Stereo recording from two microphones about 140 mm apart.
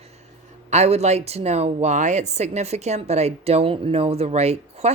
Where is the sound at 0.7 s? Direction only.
50° right (ahead or behind).